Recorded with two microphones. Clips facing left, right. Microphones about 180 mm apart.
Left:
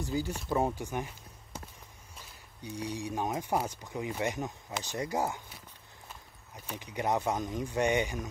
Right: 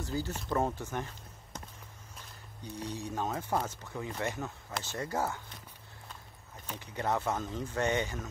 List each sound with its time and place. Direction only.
0.0 s speech: 10° left (ahead or behind)
2.6 s speech: 10° left (ahead or behind)
6.7 s speech: 15° left (ahead or behind)